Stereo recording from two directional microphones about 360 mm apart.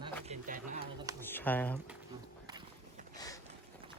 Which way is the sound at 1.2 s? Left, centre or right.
Centre.